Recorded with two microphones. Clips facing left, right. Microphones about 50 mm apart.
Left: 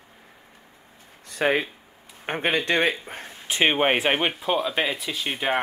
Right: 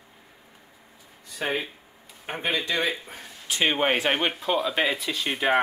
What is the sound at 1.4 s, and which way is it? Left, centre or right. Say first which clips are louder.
A man's voice: left 6 dB; left.